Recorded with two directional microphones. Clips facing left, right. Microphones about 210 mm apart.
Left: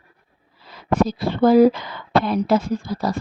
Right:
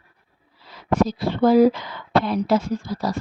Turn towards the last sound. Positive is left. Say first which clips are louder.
# left 2 dB
turn(degrees=55)  # may be behind; listen again after turning